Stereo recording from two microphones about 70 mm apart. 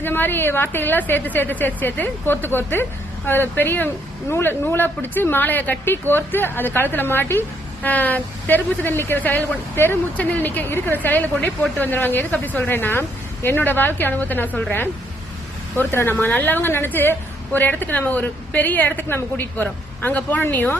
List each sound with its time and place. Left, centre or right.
0.0 s speech: left
15.8 s speech: left